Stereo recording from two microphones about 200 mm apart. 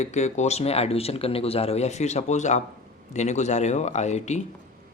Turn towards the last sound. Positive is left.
turn(degrees=35)  # may be behind; listen again after turning